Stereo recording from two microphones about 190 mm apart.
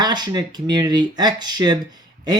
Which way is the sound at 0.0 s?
20° right (ahead or behind).